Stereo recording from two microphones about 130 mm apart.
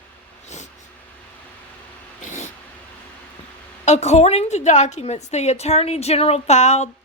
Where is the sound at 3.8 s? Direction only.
60° left (ahead or behind).